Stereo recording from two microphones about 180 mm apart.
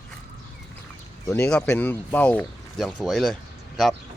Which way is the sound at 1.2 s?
10° left (ahead or behind).